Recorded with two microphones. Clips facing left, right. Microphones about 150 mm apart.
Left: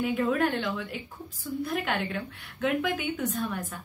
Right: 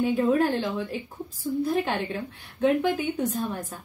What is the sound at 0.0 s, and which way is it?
A woman's voice, 30° right (ahead or behind).